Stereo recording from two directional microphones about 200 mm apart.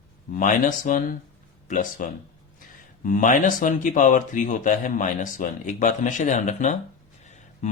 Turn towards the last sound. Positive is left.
turn(degrees=35)  # may be behind; listen again after turning